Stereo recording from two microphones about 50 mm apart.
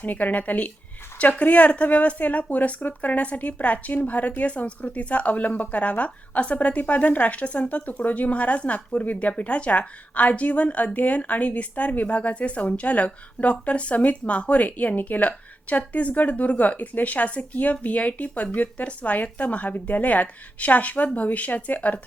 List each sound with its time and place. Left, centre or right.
0.0 s a woman's voice: left